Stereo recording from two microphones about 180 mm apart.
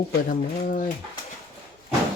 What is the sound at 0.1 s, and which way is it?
Speech, 50° left (ahead or behind).